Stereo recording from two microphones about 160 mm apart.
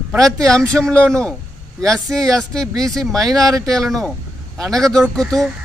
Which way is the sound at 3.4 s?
20° right (ahead or behind).